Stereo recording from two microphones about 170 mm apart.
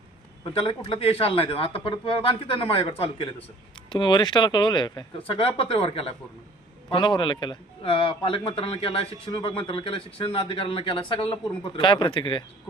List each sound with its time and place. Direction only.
0.4 s a man's voice: 30° left (ahead or behind)